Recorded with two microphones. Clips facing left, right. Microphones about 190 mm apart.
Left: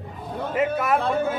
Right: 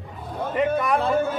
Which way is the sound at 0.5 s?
5° left (ahead or behind).